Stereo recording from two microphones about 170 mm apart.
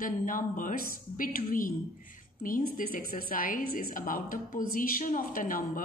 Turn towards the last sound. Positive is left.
turn(degrees=55)  # may be behind; listen again after turning